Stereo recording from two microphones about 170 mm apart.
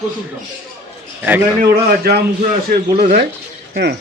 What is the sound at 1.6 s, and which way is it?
A man's voice, 65° right (ahead or behind).